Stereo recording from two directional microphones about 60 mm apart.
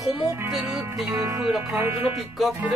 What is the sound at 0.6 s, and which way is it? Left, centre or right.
Music, right.